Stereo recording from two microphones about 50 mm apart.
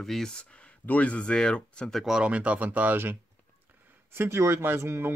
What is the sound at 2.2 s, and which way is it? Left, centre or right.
Speech, right.